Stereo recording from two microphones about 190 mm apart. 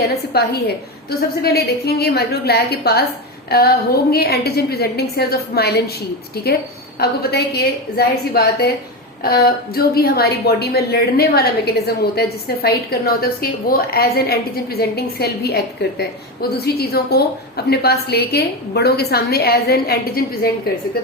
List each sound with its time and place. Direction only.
0.3 s a woman's voice: 55° left (ahead or behind)